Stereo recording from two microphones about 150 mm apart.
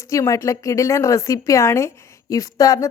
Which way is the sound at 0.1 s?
20° left (ahead or behind).